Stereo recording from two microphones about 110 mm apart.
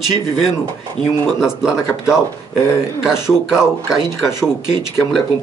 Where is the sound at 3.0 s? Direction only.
25° left (ahead or behind).